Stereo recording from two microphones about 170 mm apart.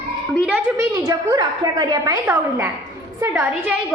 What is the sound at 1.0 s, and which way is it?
A woman's voice, 20° right (ahead or behind).